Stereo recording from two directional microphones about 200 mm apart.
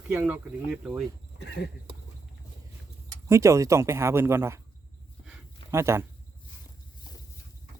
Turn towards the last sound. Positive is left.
turn(degrees=-15)  # may be behind; listen again after turning